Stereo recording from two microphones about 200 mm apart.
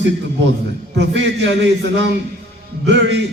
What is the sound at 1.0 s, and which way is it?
Speech, 65° right (ahead or behind).